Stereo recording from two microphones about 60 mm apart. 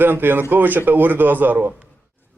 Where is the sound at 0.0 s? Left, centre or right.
Right.